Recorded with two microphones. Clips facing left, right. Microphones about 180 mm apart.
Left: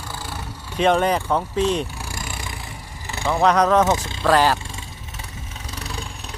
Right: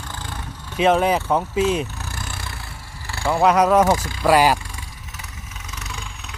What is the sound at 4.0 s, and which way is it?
Speech, 25° left (ahead or behind).